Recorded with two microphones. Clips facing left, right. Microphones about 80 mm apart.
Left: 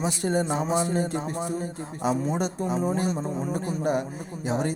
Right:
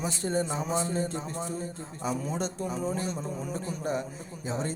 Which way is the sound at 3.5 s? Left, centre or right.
Left.